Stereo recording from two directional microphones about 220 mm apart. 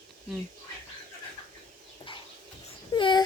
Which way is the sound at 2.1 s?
25° left (ahead or behind).